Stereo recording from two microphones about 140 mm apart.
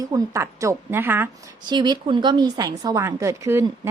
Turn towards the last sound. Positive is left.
turn(degrees=-20)  # may be behind; listen again after turning